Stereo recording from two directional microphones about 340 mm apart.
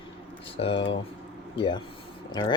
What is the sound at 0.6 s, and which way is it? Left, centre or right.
Speech, centre.